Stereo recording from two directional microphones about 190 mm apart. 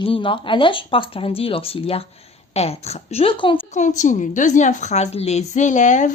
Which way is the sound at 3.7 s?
40° left (ahead or behind).